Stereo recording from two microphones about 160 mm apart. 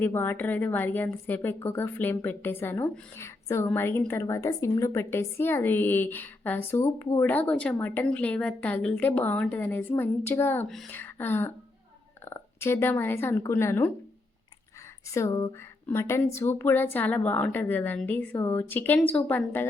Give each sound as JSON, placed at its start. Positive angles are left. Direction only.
{"t": 0.0, "sound": "a woman's voice", "side_deg": 15}
{"t": 15.0, "sound": "a woman's voice", "side_deg": 20}